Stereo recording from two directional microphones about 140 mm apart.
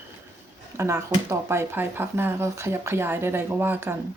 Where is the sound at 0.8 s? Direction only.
20° right (ahead or behind).